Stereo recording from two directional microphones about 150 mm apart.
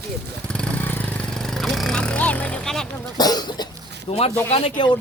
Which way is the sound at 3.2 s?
25° left (ahead or behind).